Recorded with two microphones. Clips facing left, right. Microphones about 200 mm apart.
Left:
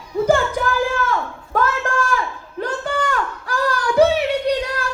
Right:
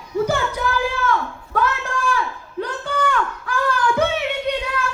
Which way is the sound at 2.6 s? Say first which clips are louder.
Left 2 dB; 45° left (ahead or behind).